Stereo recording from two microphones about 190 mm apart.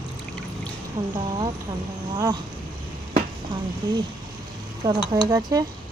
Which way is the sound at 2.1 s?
15° right (ahead or behind).